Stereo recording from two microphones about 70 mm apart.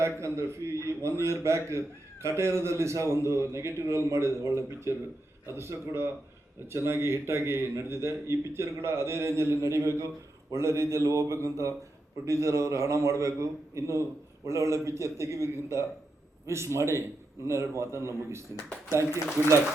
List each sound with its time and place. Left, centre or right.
0.0 s a man's voice: right